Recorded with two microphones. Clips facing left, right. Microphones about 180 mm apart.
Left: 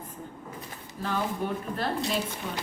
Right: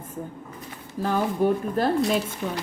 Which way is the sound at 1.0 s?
45° right (ahead or behind).